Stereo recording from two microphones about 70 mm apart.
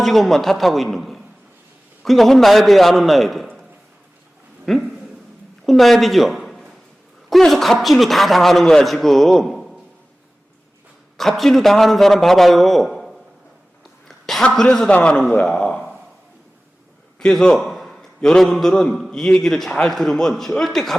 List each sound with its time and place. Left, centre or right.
0.0 s a man's voice: centre
4.6 s a woman's voice: centre
11.2 s a man's voice: centre
14.5 s a man's voice: centre
17.2 s a man's voice: centre